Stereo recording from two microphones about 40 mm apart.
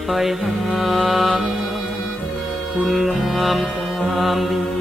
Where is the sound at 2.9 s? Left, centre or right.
Centre.